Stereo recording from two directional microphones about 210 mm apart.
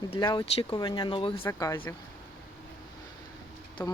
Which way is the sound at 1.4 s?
10° left (ahead or behind).